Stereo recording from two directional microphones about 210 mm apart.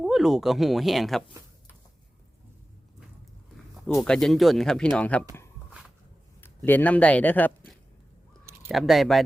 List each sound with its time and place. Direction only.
0.0 s speech: centre (ahead or behind)
3.8 s speech: 5° left (ahead or behind)
6.4 s speech: 10° left (ahead or behind)